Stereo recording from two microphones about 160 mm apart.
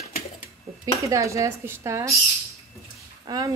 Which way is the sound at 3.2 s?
25° right (ahead or behind).